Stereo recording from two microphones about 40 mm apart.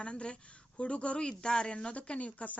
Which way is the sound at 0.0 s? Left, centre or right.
Left.